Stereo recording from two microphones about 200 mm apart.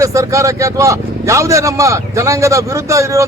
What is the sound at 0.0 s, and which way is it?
A man's voice, 15° right (ahead or behind).